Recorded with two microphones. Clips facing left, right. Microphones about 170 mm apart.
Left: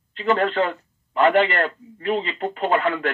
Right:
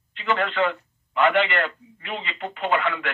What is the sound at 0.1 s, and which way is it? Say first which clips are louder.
Speech: left 5 dB; 40° left (ahead or behind).